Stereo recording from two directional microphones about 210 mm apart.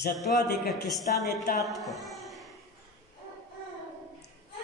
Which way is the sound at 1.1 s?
40° left (ahead or behind).